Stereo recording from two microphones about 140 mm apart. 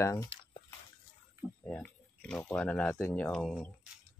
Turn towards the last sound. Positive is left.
turn(degrees=5)  # may be behind; listen again after turning